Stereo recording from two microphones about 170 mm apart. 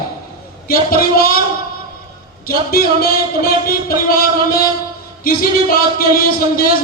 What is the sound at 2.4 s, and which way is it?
Speech, 65° left (ahead or behind).